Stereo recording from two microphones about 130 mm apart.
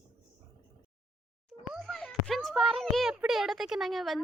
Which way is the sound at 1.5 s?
Centre (ahead or behind).